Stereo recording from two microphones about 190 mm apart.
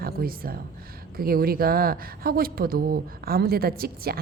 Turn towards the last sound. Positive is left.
turn(degrees=-50)  # may be behind; listen again after turning